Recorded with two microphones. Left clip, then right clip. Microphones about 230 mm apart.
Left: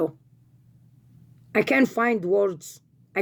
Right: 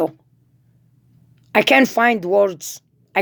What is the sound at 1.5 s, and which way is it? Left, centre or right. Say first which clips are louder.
A woman's voice: right 8 dB; centre.